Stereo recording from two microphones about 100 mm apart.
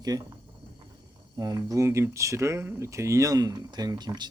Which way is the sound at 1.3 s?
35° right (ahead or behind).